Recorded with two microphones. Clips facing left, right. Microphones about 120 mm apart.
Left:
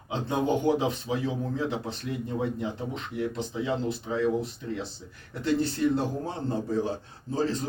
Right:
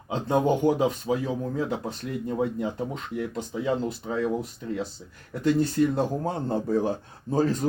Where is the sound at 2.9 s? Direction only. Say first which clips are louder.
Even; 45° right (ahead or behind).